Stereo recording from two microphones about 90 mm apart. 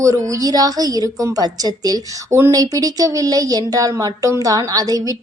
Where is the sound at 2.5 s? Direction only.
45° right (ahead or behind).